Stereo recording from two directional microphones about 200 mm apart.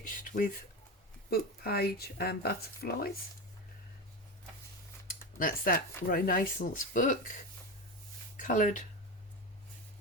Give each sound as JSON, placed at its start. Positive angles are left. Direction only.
{"t": 0.1, "sound": "a sound", "side_deg": 45}
{"t": 1.3, "sound": "speech", "side_deg": 50}
{"t": 5.4, "sound": "speech", "side_deg": 45}
{"t": 8.4, "sound": "speech", "side_deg": 40}